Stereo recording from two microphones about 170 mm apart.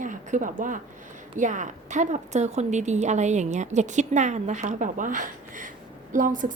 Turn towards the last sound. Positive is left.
turn(degrees=-50)  # may be behind; listen again after turning